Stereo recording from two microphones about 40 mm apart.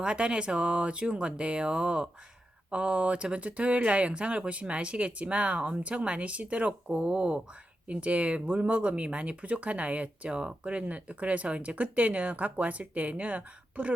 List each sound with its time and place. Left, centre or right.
0.0 s speech: right